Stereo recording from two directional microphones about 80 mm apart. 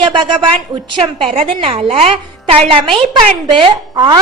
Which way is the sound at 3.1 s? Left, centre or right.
Right.